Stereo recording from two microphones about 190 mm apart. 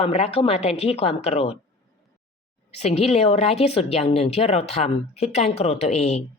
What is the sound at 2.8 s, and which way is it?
A woman's voice, 35° left (ahead or behind).